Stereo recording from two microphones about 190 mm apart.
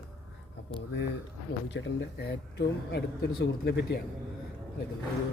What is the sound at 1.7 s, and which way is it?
Speech, 75° left (ahead or behind).